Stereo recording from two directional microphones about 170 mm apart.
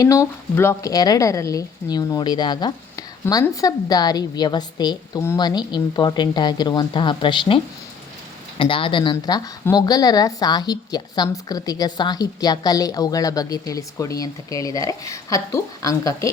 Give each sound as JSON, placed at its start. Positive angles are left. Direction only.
{"t": 0.0, "sound": "a woman's voice", "side_deg": 20}